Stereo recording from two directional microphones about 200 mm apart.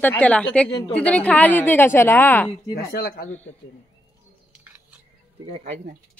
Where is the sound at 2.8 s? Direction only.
50° left (ahead or behind).